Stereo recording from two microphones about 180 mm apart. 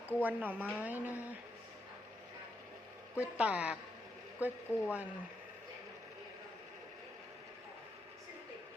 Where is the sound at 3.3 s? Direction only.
5° right (ahead or behind).